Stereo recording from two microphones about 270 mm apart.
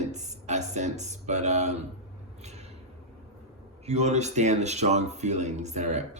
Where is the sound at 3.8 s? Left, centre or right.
Right.